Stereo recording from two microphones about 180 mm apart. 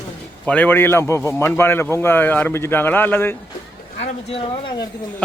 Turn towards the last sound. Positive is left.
turn(degrees=30)  # may be behind; listen again after turning